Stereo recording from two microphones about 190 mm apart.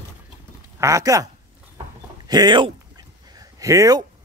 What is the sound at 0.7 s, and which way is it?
Speech, 15° right (ahead or behind).